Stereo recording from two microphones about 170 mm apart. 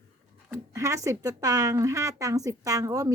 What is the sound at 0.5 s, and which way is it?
A woman's voice, 15° right (ahead or behind).